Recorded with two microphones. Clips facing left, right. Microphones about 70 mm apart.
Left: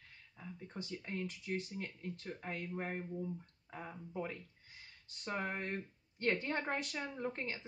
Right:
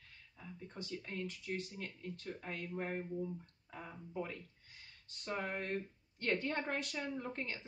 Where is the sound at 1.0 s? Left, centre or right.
Left.